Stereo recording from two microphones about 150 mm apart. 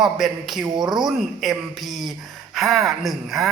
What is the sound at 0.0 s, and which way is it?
Speech, centre (ahead or behind).